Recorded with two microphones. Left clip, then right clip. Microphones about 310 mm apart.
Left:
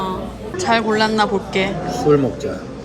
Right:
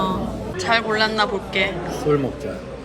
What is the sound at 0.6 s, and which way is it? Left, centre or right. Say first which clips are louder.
A woman's voice: left 3 dB; centre.